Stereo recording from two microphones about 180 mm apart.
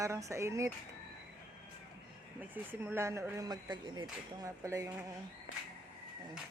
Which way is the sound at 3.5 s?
25° right (ahead or behind).